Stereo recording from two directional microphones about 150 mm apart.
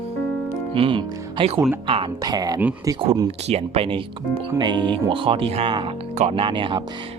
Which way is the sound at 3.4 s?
45° right (ahead or behind).